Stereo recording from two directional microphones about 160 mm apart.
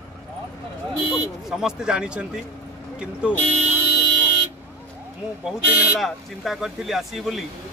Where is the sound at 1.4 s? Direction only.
5° right (ahead or behind).